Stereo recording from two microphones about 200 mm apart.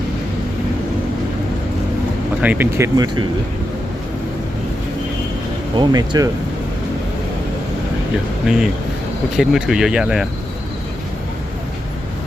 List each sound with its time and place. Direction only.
2.4 s speech: 10° right (ahead or behind)
5.7 s speech: 20° right (ahead or behind)
8.5 s speech: centre (ahead or behind)